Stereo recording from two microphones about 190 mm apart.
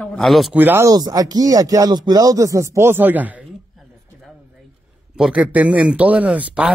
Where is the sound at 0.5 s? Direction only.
10° right (ahead or behind).